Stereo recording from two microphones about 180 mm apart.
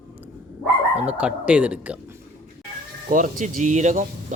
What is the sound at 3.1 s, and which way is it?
Speech, 45° right (ahead or behind).